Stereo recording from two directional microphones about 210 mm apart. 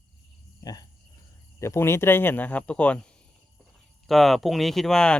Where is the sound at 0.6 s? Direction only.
20° left (ahead or behind).